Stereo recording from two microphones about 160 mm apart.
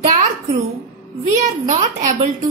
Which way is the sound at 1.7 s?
45° right (ahead or behind).